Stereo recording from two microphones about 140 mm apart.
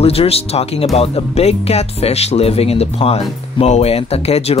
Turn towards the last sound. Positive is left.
turn(degrees=45)  # may be behind; listen again after turning